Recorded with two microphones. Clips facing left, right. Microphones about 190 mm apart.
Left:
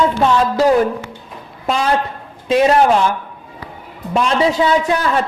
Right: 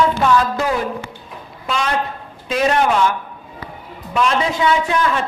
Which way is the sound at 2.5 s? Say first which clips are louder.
Left 5 dB; 30° left (ahead or behind).